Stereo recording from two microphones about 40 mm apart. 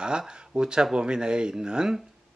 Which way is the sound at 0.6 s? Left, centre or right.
Right.